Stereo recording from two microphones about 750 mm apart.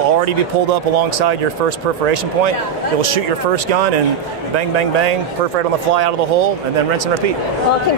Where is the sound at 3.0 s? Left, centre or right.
Right.